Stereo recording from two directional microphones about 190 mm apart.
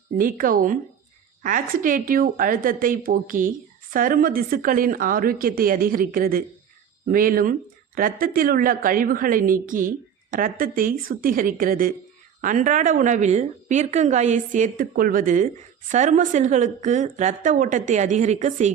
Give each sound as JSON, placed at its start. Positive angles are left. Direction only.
{"t": 0.2, "sound": "a woman's voice", "side_deg": -45}